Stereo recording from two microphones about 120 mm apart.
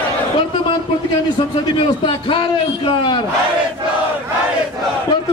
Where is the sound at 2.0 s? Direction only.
45° left (ahead or behind).